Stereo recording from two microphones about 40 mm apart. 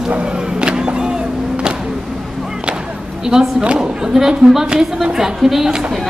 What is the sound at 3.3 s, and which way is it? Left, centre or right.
Speech, centre.